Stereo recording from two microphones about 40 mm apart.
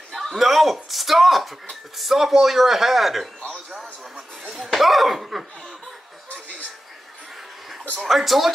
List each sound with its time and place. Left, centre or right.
0.1 s a man's voice: centre
4.7 s speech: centre
8.0 s speech: centre